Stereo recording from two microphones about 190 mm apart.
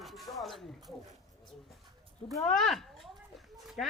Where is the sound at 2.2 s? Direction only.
20° left (ahead or behind).